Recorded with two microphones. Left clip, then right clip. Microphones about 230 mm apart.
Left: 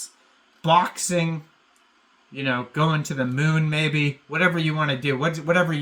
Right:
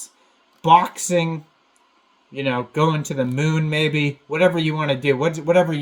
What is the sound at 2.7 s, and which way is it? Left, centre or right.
Speech, centre.